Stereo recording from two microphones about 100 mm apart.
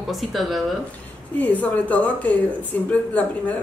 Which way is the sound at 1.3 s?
15° left (ahead or behind).